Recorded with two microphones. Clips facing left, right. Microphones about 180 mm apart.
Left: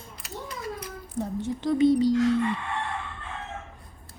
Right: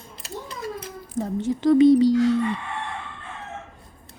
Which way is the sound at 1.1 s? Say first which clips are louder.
Right 5 dB; 90° right.